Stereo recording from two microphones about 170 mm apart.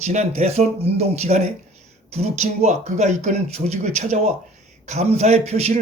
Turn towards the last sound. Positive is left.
turn(degrees=-40)  # may be behind; listen again after turning